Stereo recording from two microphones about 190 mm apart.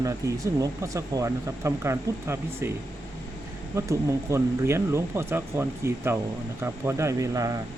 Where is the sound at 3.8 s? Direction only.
15° right (ahead or behind).